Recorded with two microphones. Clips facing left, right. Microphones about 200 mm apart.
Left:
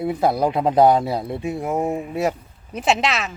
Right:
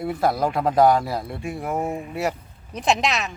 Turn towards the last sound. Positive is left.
turn(degrees=0)  # may be behind; listen again after turning